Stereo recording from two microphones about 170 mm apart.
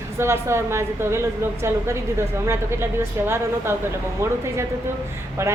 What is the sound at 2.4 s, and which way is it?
Speech, 15° right (ahead or behind).